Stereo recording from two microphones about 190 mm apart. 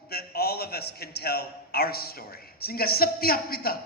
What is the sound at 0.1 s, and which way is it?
A man's voice, 55° left (ahead or behind).